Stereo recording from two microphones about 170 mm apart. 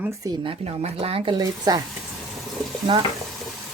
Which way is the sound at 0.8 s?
35° right (ahead or behind).